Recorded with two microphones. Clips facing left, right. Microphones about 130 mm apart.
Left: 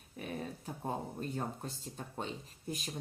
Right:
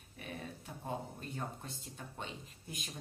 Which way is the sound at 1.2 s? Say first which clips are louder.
Left 5 dB; 40° left (ahead or behind).